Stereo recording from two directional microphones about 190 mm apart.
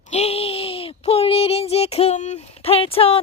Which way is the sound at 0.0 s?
35° left (ahead or behind).